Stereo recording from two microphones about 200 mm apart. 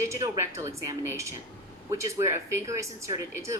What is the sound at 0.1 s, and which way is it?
Speech, 15° right (ahead or behind).